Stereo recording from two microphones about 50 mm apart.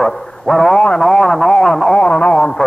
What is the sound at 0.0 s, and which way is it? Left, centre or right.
Speech, centre.